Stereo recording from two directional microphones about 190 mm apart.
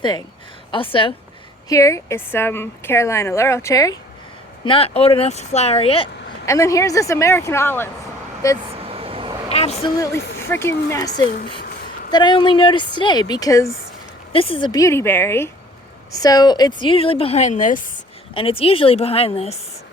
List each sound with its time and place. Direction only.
0.0 s a woman's voice: 20° left (ahead or behind)
1.7 s a woman's voice: 15° left (ahead or behind)
4.6 s speech: 30° left (ahead or behind)
6.4 s a woman's voice: 15° left (ahead or behind)
8.7 s vehicle: 30° right (ahead or behind)
9.5 s vehicle: 35° left (ahead or behind)
10.4 s a woman's voice: 15° left (ahead or behind)
11.3 s speech: 50° left (ahead or behind)
12.1 s a woman's voice: 25° left (ahead or behind)
14.3 s a woman's voice: 30° left (ahead or behind)
18.3 s speech: 30° left (ahead or behind)